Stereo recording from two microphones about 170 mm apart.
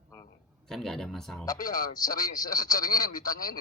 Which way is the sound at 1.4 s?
20° left (ahead or behind).